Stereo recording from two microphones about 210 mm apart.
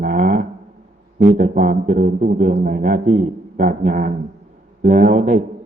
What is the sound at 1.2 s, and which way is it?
A man's voice, 40° right (ahead or behind).